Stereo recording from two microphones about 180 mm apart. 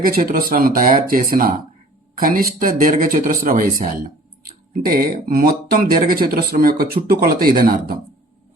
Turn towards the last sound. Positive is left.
turn(degrees=-55)  # may be behind; listen again after turning